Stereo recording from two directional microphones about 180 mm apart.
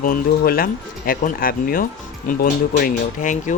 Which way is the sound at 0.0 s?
55° left (ahead or behind).